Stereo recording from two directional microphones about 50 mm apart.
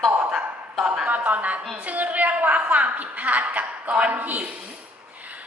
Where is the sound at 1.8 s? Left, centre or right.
Right.